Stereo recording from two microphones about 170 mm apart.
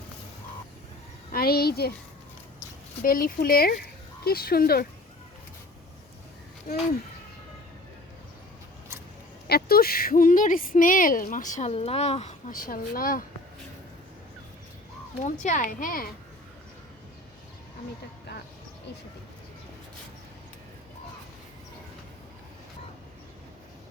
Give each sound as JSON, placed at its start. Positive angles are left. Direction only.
{"t": 1.3, "sound": "a sound", "side_deg": 60}
{"t": 3.0, "sound": "speech", "side_deg": 55}
{"t": 9.5, "sound": "speech", "side_deg": 65}
{"t": 12.5, "sound": "speech", "side_deg": 55}
{"t": 15.2, "sound": "speech", "side_deg": 45}